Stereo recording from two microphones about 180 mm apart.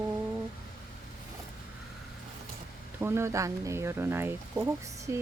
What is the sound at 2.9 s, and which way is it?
Speech, 15° right (ahead or behind).